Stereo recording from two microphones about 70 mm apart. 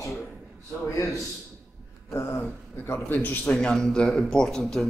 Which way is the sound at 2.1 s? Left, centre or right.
Left.